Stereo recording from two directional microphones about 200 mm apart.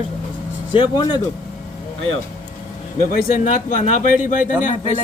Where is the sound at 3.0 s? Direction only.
45° left (ahead or behind).